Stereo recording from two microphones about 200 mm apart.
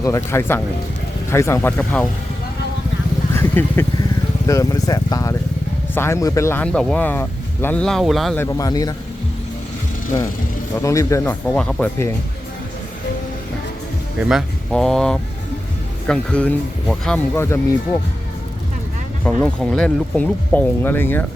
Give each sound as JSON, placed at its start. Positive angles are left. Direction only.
{"t": 0.0, "sound": "speech", "side_deg": 15}
{"t": 3.3, "sound": "speech", "side_deg": 10}
{"t": 8.4, "sound": "speech", "side_deg": 15}
{"t": 10.8, "sound": "speech", "side_deg": 15}
{"t": 14.2, "sound": "speech", "side_deg": 0}
{"t": 19.2, "sound": "speech", "side_deg": 5}